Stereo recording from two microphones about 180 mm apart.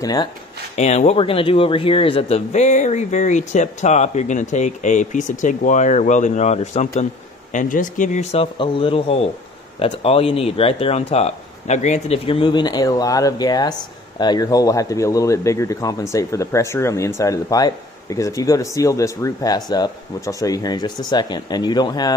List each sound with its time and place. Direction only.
0.0 s speech: 20° left (ahead or behind)
0.7 s speech: 40° left (ahead or behind); by 22.1 s 25° left (ahead or behind)